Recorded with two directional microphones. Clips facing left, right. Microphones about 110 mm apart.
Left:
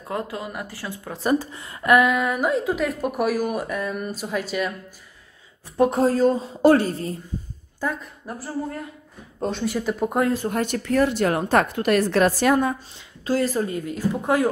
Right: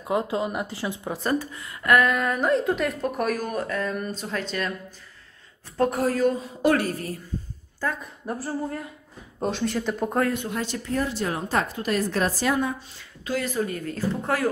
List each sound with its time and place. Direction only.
0.0 s speech: 20° right (ahead or behind)
1.4 s a woman's voice: 30° left (ahead or behind)
2.0 s a woman's voice: 5° left (ahead or behind)
5.8 s a woman's voice: 25° left (ahead or behind)
8.2 s speech: 20° right (ahead or behind)
9.4 s a woman's voice: centre (ahead or behind)
10.2 s speech: 35° left (ahead or behind)
10.5 s speech: 55° left (ahead or behind)
13.2 s speech: 35° left (ahead or behind)
13.7 s speech: 15° left (ahead or behind)